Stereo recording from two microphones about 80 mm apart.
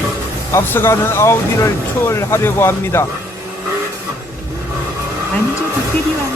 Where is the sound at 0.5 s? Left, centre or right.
Left.